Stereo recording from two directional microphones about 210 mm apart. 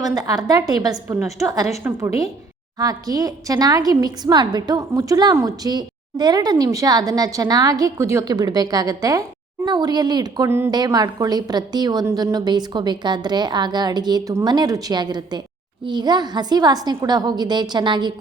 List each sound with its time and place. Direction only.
0.0 s a woman's voice: 15° right (ahead or behind)